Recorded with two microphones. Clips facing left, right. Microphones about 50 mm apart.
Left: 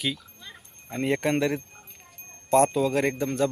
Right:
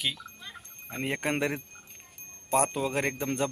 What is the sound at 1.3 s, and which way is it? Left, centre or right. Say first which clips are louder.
Speech: left 2 dB; right.